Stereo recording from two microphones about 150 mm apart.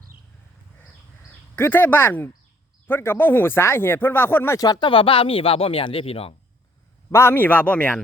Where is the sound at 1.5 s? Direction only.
15° left (ahead or behind); by 6.3 s 40° left (ahead or behind).